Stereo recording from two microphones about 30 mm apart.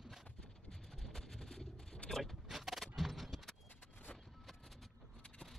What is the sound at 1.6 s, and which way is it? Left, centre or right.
Pigeon, centre.